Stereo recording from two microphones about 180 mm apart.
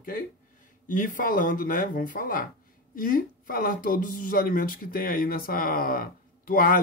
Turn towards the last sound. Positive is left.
turn(degrees=50)  # may be behind; listen again after turning